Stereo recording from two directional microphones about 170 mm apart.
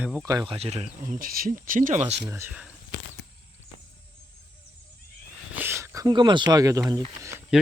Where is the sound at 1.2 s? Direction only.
55° right (ahead or behind); by 2.2 s 40° right (ahead or behind).